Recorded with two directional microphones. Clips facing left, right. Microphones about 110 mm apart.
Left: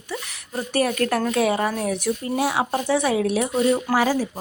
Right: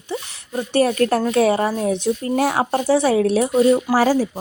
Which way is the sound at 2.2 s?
50° right (ahead or behind).